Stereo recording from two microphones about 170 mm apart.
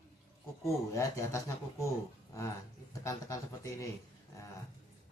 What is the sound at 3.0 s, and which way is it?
Speech, 20° left (ahead or behind).